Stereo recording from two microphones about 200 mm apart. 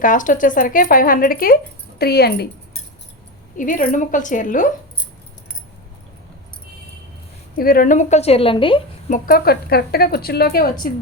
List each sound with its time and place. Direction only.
0.0 s a woman's voice: 40° left (ahead or behind)
3.6 s a woman's voice: 40° left (ahead or behind)
7.5 s a woman's voice: 45° left (ahead or behind); by 8.8 s 25° left (ahead or behind)
9.0 s a woman's voice: 40° left (ahead or behind)